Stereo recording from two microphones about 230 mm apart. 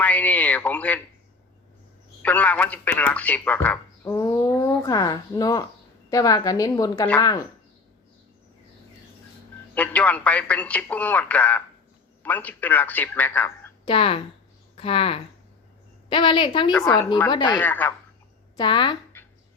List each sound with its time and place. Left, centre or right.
0.0 s speech: centre
2.2 s speech: centre
9.7 s speech: centre
13.8 s a woman's voice: left
17.6 s speech: centre
18.5 s speech: centre